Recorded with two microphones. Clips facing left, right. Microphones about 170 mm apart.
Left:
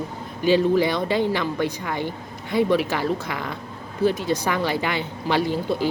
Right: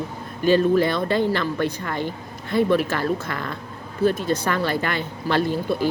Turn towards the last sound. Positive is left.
turn(degrees=15)  # may be behind; listen again after turning